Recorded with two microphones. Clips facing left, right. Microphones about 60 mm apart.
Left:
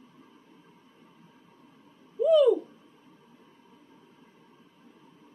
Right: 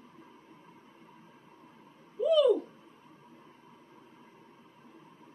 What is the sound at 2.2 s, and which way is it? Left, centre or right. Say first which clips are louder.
Owl: left 4 dB; centre.